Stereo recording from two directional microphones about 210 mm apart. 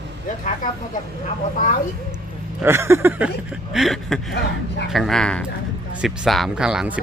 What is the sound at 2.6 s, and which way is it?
Speech, 10° right (ahead or behind).